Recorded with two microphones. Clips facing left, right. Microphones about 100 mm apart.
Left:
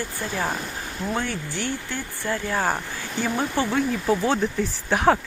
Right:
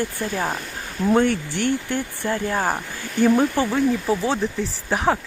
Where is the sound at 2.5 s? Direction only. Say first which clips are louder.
Right 1 dB; 10° right (ahead or behind).